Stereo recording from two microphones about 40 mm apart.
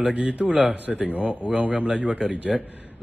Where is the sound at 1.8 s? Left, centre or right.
Right.